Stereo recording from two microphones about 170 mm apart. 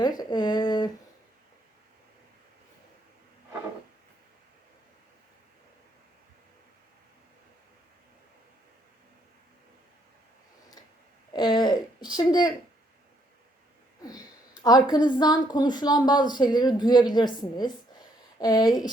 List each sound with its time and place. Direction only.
0.0 s a woman's voice: 25° left (ahead or behind)
11.3 s a woman's voice: 25° left (ahead or behind)
14.0 s a sound: 20° left (ahead or behind)
14.6 s a woman's voice: 25° left (ahead or behind)